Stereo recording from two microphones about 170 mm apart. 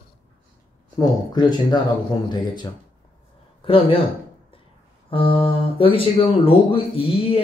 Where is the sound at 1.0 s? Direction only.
25° left (ahead or behind).